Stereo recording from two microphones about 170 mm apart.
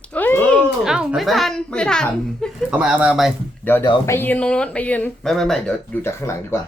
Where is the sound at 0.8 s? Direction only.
5° right (ahead or behind).